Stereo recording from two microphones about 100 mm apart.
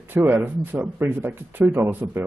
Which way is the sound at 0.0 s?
20° right (ahead or behind).